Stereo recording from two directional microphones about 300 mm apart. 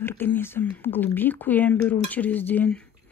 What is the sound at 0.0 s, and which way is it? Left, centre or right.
Speech, centre.